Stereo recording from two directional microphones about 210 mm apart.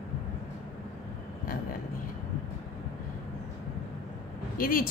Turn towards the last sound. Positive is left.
turn(degrees=40)  # may be behind; listen again after turning